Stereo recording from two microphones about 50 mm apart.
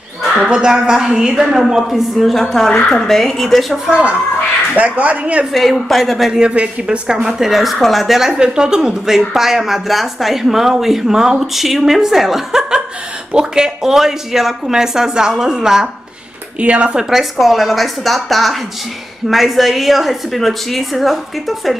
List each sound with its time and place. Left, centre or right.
0.5 s a woman's voice: centre
3.9 s a woman's voice: right
5.5 s a woman's voice: centre
6.4 s a woman's voice: right
7.2 s a woman's voice: centre
8.3 s a woman's voice: centre
16.5 s a woman's voice: right
17.1 s a woman's voice: centre